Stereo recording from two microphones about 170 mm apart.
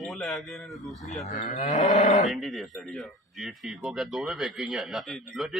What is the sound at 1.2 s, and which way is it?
Cattle, 45° left (ahead or behind).